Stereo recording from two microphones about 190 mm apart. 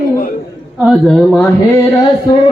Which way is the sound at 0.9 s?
Centre (ahead or behind).